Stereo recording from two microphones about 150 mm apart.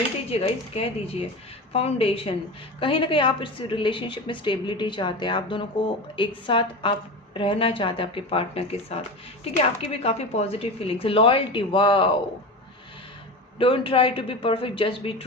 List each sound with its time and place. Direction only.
0.3 s a woman's voice: 40° left (ahead or behind)
13.6 s a woman's voice: 35° left (ahead or behind)